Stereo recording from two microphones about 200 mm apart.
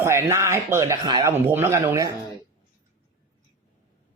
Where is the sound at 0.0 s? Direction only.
15° right (ahead or behind).